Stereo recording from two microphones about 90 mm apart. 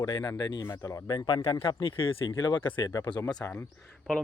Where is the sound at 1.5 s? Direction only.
75° left (ahead or behind).